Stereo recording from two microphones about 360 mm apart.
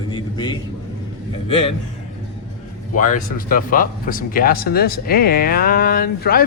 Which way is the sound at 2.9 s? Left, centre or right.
Left.